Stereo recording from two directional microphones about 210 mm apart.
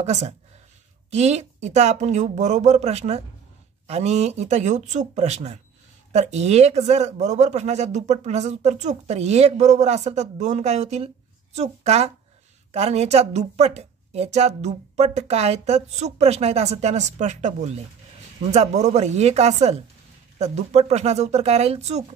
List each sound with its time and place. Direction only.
0.0 s speech: 30° right (ahead or behind)